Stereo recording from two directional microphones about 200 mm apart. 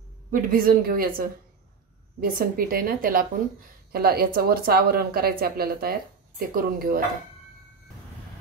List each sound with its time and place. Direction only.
0.3 s speech: 45° right (ahead or behind)